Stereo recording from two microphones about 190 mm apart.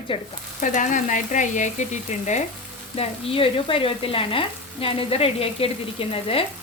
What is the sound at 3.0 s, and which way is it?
Frying, 30° left (ahead or behind).